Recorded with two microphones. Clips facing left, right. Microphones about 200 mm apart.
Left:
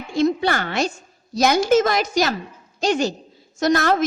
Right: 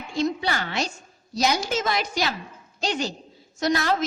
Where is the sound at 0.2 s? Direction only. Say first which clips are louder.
Left 6 dB; 55° left (ahead or behind).